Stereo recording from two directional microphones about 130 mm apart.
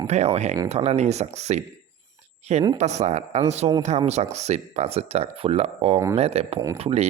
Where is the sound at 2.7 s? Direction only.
60° right (ahead or behind).